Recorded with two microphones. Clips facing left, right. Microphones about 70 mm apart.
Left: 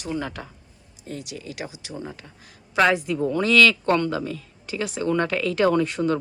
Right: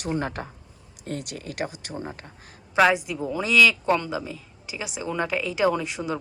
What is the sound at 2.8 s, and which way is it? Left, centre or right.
Speech, centre.